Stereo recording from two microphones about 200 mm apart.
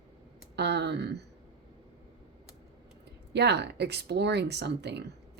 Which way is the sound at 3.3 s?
55° right (ahead or behind).